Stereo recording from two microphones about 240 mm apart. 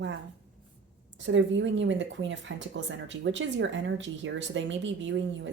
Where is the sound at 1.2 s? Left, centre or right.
Right.